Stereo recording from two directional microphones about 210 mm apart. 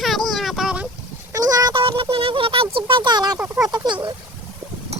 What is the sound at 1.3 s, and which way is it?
Speech, 15° right (ahead or behind).